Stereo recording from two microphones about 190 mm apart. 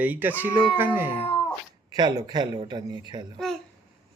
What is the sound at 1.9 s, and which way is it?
A man's voice, 20° right (ahead or behind).